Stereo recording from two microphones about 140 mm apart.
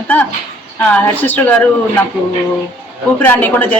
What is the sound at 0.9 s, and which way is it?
Speech, 10° left (ahead or behind).